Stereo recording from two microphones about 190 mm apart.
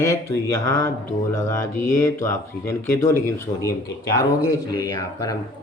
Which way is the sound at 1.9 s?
15° left (ahead or behind).